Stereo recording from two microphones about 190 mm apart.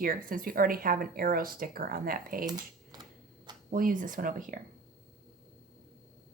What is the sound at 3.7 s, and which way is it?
Speech, 45° right (ahead or behind).